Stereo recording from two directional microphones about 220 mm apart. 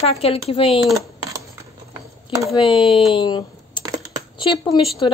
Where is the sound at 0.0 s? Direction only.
25° left (ahead or behind).